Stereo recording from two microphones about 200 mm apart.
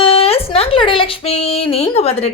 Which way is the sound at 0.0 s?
25° left (ahead or behind).